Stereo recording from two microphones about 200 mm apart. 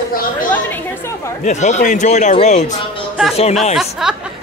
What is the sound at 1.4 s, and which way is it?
Speech, 35° left (ahead or behind).